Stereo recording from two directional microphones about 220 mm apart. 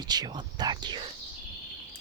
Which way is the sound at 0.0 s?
20° right (ahead or behind).